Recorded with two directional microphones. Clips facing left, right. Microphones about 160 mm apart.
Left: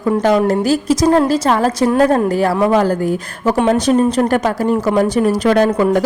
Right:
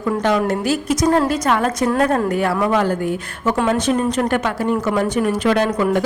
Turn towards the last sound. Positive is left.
turn(degrees=30)  # may be behind; listen again after turning